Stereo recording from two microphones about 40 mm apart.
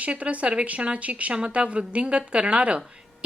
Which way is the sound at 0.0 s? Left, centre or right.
Right.